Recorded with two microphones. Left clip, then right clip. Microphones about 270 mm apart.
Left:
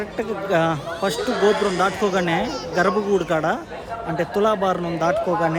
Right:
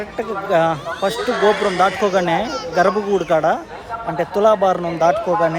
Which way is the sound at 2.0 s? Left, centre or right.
Centre.